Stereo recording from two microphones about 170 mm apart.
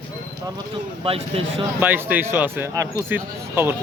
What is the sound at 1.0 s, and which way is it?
Speech, 35° right (ahead or behind).